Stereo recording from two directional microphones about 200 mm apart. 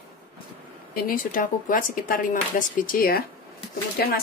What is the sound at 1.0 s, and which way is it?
Speech, 45° left (ahead or behind).